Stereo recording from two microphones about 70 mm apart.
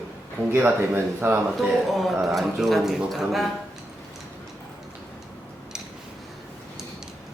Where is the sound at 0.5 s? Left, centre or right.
Right.